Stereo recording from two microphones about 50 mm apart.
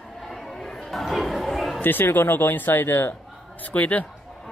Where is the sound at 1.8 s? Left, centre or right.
Left.